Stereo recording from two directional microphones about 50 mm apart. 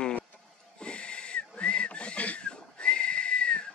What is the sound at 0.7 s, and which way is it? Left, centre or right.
Whistling, left.